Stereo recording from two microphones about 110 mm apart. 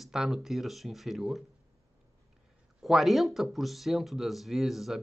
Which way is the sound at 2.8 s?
Centre (ahead or behind).